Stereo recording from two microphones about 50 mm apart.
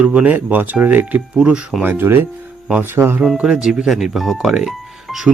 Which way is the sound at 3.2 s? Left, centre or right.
Centre.